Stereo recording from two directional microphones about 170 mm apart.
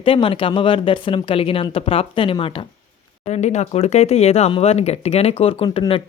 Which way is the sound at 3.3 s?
45° left (ahead or behind).